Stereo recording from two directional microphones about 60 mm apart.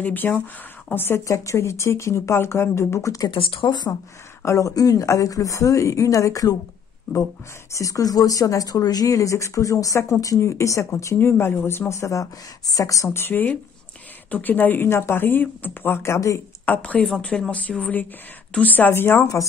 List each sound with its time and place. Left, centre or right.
0.0 s speech: left
1.2 s speech: left
4.5 s a woman's voice: left
7.7 s a woman's voice: left
11.1 s speech: left
11.9 s a woman's voice: left
13.1 s speech: left
16.6 s speech: left
17.2 s speech: centre; by 19.1 s left
19.4 s a woman's voice: left